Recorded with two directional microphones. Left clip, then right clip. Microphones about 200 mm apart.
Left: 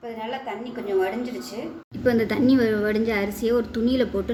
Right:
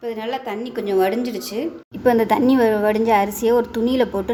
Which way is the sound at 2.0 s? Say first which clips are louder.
Right 5 dB; 10° right (ahead or behind).